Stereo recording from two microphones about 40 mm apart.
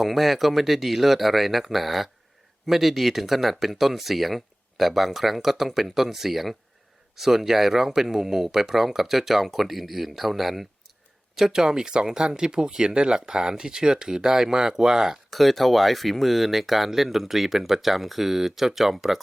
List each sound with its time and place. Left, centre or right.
0.0 s speech: centre
15.3 s speech: centre